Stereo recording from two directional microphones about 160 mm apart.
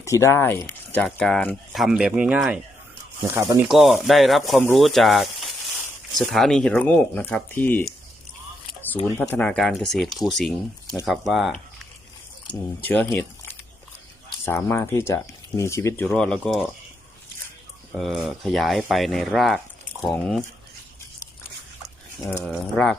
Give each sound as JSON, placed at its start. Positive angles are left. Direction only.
{"t": 0.0, "sound": "speech", "side_deg": 20}
{"t": 3.6, "sound": "speech", "side_deg": 0}
{"t": 9.1, "sound": "speech", "side_deg": 10}
{"t": 12.8, "sound": "speech", "side_deg": 10}
{"t": 13.1, "sound": "a sound", "side_deg": 15}
{"t": 14.4, "sound": "speech", "side_deg": 15}
{"t": 16.0, "sound": "speech", "side_deg": 5}
{"t": 17.9, "sound": "speech", "side_deg": 0}
{"t": 22.4, "sound": "speech", "side_deg": 5}